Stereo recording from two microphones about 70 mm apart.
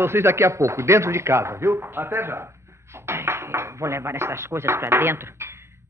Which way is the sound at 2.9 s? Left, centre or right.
Right.